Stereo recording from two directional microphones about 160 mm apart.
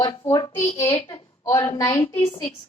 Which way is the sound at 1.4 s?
20° left (ahead or behind).